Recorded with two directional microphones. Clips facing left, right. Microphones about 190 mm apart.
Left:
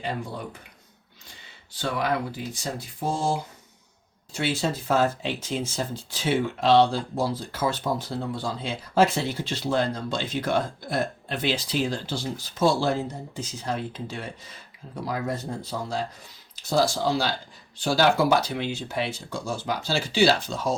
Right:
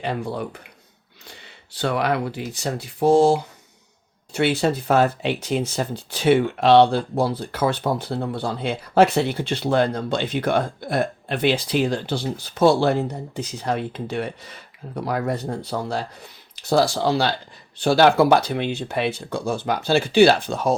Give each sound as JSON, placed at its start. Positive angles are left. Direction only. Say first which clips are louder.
{"t": 0.0, "sound": "speech", "louder": "right 5 dB", "side_deg": -70}